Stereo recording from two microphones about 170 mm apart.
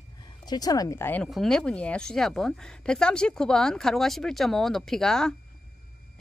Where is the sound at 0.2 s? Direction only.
25° left (ahead or behind).